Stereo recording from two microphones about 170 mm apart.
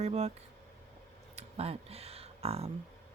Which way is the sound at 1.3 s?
35° right (ahead or behind).